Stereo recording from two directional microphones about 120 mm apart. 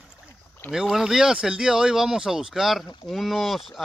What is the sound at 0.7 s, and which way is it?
Speech, 5° right (ahead or behind).